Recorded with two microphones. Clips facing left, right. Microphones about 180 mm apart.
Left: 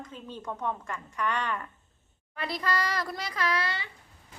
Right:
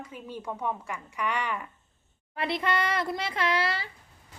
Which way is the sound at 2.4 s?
25° right (ahead or behind).